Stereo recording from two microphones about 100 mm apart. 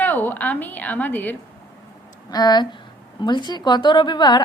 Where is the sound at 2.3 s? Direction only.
45° left (ahead or behind).